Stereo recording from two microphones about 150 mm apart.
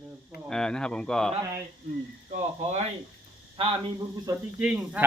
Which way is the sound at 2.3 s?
50° right (ahead or behind).